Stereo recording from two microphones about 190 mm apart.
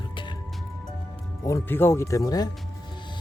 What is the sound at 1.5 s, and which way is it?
Speech, 15° left (ahead or behind).